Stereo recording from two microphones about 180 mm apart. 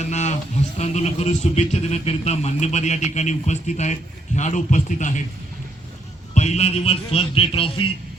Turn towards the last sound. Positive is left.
turn(degrees=30)  # may be behind; listen again after turning